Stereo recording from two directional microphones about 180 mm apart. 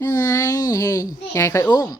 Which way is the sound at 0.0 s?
20° left (ahead or behind).